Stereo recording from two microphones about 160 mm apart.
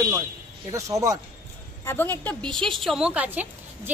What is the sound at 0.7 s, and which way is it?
Speech, 20° right (ahead or behind).